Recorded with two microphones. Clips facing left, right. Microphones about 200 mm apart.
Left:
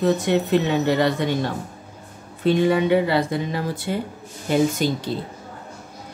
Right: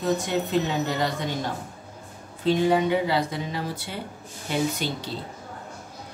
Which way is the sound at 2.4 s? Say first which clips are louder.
Left 3 dB; 60° left (ahead or behind).